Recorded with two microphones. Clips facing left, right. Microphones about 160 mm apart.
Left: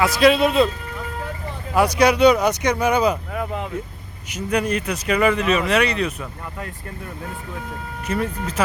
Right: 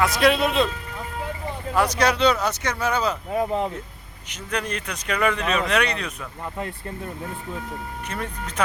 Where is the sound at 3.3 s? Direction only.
30° right (ahead or behind).